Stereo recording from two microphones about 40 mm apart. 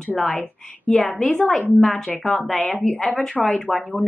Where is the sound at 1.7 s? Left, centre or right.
Right.